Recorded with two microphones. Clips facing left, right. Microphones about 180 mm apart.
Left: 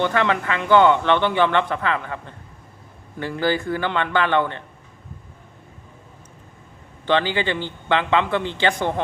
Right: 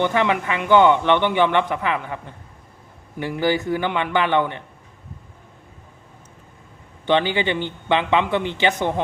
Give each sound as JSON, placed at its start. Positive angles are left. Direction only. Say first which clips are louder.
{"t": 0.0, "sound": "speech", "louder": "right 1 dB", "side_deg": -15}
{"t": 7.0, "sound": "speech", "louder": "right 1 dB", "side_deg": -15}